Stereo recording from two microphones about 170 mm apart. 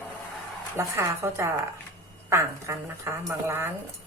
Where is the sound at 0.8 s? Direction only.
15° right (ahead or behind).